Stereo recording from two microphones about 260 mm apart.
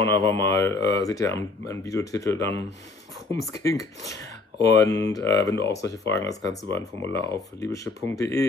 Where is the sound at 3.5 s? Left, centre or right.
Centre.